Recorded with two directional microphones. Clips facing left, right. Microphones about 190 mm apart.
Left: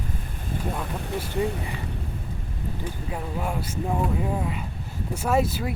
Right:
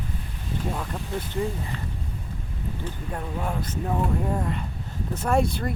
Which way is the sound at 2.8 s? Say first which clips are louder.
Left 1 dB; 10° left (ahead or behind).